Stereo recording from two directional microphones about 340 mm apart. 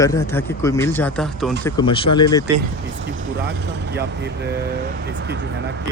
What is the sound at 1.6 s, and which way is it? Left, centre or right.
Speech, centre.